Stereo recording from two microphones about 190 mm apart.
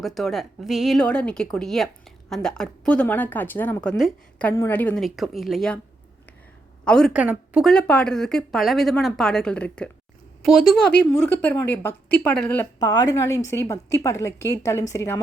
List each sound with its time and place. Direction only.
0.0 s speech: centre (ahead or behind)
6.8 s speech: 5° left (ahead or behind)
11.3 s a woman's voice: 10° left (ahead or behind)
12.8 s a woman's voice: 20° left (ahead or behind)